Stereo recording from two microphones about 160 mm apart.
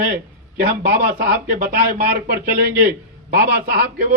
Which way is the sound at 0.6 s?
60° right (ahead or behind).